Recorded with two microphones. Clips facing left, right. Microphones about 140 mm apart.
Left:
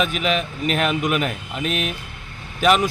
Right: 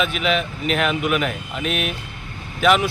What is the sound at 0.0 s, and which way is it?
Speech, 40° left (ahead or behind).